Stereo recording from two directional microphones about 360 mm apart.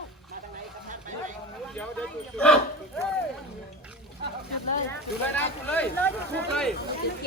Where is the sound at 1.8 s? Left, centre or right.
Centre.